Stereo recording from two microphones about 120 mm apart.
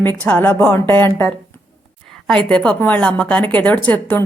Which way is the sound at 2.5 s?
10° left (ahead or behind).